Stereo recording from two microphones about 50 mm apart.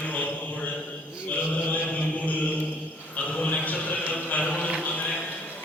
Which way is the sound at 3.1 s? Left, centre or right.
Left.